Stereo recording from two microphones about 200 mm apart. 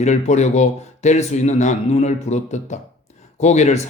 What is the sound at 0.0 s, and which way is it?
Speech, 35° left (ahead or behind).